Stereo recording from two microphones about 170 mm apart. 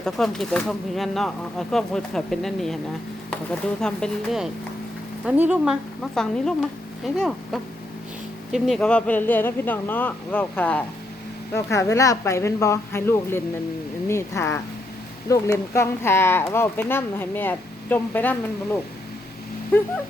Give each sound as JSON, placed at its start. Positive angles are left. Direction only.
{"t": 0.0, "sound": "speech", "side_deg": 5}